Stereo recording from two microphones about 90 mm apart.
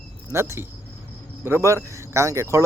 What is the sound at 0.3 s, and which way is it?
Speech, 30° right (ahead or behind).